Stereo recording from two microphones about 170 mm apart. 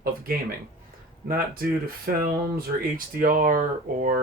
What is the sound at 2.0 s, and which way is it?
Speech, 60° right (ahead or behind).